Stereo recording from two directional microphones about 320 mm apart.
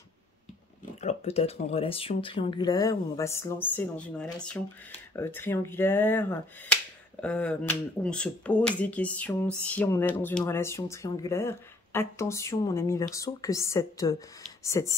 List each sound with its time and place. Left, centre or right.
1.0 s speech: centre